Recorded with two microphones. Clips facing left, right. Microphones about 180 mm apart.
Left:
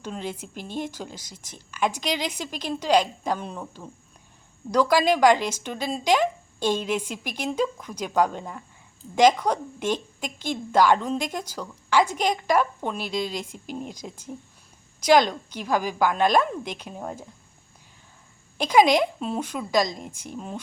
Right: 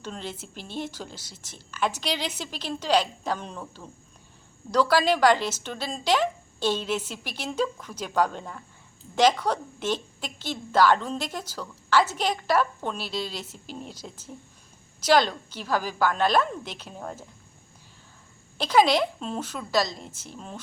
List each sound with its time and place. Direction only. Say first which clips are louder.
0.0 s speech: left 3 dB; 10° left (ahead or behind)
0.4 s speech: left 4 dB; 45° left (ahead or behind)
0.8 s a woman's voice: left 2 dB; 10° left (ahead or behind)
18.5 s speech: left 2 dB; 15° left (ahead or behind)